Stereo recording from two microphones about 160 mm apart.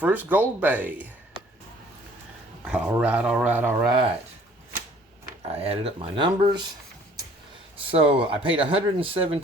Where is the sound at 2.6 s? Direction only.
5° right (ahead or behind).